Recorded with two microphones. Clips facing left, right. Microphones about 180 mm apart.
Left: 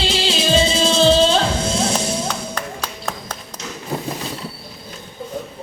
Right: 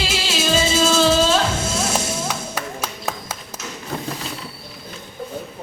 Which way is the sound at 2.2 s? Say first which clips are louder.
Left 1 dB; 10° right (ahead or behind).